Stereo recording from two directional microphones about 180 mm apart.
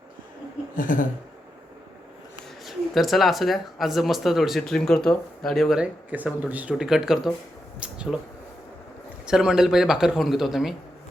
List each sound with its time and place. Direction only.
0.8 s speech: 50° left (ahead or behind)
2.6 s speech: centre (ahead or behind)
9.2 s speech: 5° right (ahead or behind)